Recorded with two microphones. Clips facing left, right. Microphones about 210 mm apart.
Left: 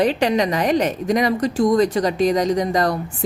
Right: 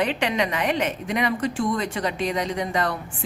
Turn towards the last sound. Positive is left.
turn(degrees=40)  # may be behind; listen again after turning